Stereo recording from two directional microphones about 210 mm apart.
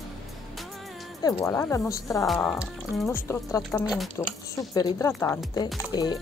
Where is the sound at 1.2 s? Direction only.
15° left (ahead or behind).